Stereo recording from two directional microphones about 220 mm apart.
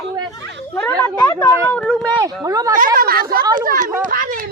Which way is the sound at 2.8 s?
40° right (ahead or behind).